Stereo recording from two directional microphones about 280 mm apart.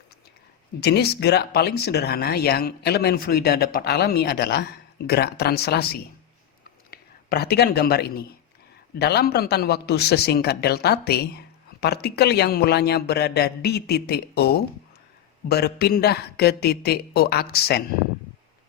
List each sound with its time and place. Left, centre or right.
0.8 s a man's voice: left